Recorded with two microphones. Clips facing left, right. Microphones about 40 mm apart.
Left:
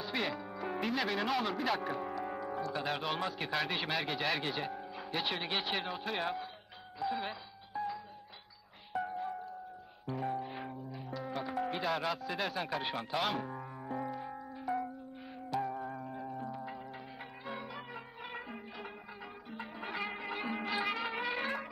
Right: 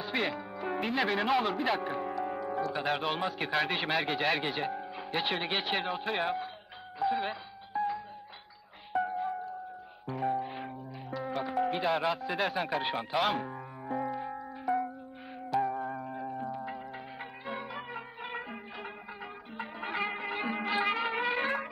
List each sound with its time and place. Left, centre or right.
0.0 s music: centre
2.8 s a man's voice: centre
7.0 s doorbell: centre
8.9 s music: centre
10.4 s music: centre
15.5 s music: centre